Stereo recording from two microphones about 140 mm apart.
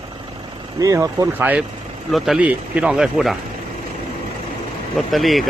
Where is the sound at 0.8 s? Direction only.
25° right (ahead or behind).